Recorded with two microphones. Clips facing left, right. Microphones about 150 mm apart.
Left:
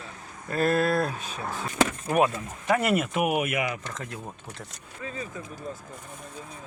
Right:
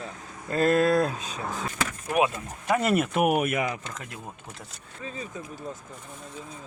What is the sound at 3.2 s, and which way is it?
Speech, 40° right (ahead or behind).